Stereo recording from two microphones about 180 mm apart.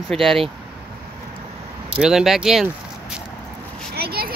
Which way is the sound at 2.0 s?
5° right (ahead or behind).